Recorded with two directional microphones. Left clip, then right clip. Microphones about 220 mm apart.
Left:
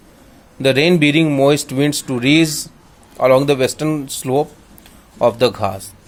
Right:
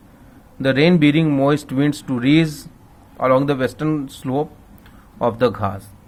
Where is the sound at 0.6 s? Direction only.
30° left (ahead or behind).